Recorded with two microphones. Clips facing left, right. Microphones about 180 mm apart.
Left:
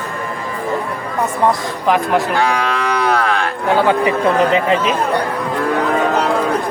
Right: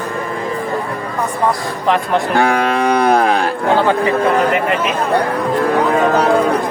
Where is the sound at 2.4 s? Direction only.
55° right (ahead or behind).